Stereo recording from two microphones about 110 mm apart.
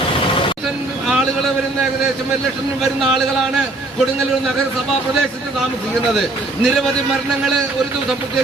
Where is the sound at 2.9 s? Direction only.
Centre (ahead or behind).